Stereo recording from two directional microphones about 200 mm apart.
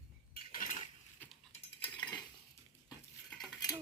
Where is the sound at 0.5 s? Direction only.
40° left (ahead or behind).